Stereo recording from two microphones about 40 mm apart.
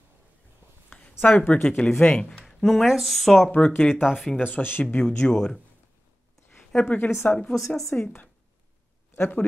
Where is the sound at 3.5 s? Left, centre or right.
Left.